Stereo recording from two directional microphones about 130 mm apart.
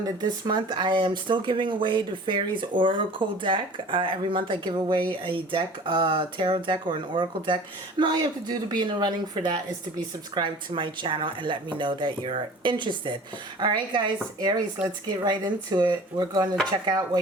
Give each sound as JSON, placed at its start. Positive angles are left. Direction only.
{"t": 0.0, "sound": "speech", "side_deg": -30}